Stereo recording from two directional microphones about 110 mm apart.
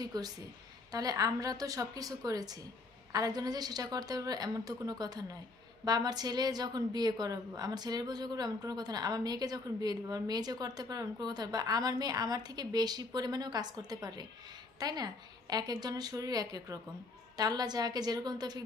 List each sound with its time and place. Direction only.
0.0 s a woman's voice: 35° right (ahead or behind)